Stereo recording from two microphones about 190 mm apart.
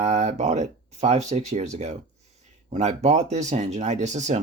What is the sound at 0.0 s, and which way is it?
Speech, 35° right (ahead or behind).